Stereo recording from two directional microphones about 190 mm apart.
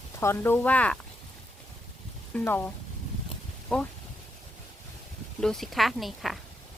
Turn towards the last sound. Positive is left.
turn(degrees=0)  # may be behind; listen again after turning